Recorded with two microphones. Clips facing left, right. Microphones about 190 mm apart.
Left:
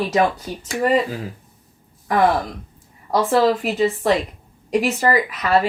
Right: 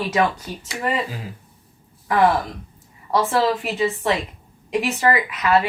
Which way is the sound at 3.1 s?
40° left (ahead or behind).